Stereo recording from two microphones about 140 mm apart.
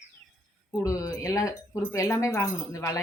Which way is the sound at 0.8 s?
25° left (ahead or behind).